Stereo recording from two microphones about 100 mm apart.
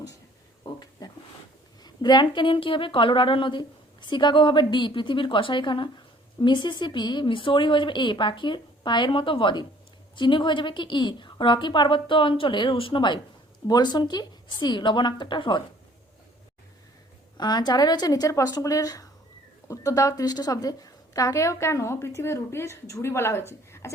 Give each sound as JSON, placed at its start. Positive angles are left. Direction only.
{"t": 0.6, "sound": "a sound", "side_deg": 40}
{"t": 1.8, "sound": "a woman's voice", "side_deg": 45}
{"t": 17.3, "sound": "a woman's voice", "side_deg": 45}